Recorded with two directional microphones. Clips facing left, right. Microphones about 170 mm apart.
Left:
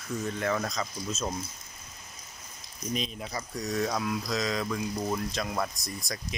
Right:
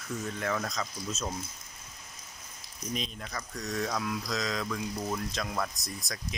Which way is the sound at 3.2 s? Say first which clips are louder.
Left 4 dB; 15° left (ahead or behind).